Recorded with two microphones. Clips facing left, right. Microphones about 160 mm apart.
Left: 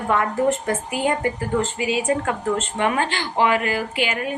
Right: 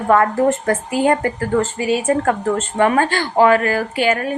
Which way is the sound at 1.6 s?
45° right (ahead or behind).